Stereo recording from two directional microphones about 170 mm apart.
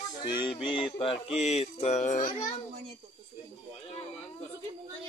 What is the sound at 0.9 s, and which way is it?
Speech, 35° left (ahead or behind).